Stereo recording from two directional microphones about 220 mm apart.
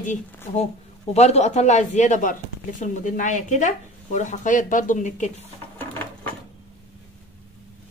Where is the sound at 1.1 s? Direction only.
30° left (ahead or behind).